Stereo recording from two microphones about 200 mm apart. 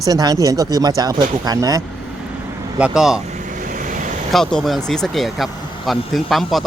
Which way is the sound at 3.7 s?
40° right (ahead or behind).